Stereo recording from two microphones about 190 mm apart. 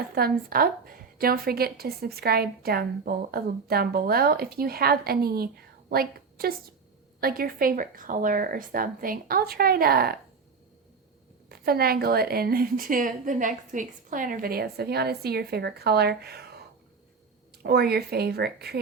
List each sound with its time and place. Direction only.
0.1 s a woman's voice: 50° right (ahead or behind)
11.4 s a woman's voice: 55° right (ahead or behind)